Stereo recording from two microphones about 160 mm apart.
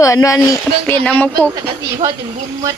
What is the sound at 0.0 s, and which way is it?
Speech, 20° left (ahead or behind).